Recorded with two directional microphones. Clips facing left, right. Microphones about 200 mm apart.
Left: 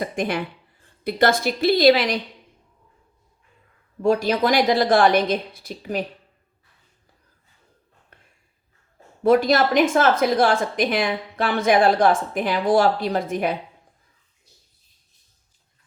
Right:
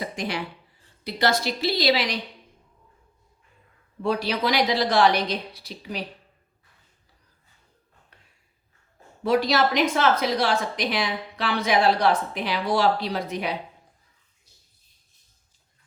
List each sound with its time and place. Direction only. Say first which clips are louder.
0.0 s a woman's voice: left 5 dB; 55° left (ahead or behind)
4.0 s a woman's voice: left 6 dB; 45° left (ahead or behind)
8.1 s a sound: left 6 dB; 50° left (ahead or behind)
9.2 s a woman's voice: left 5 dB; 50° left (ahead or behind)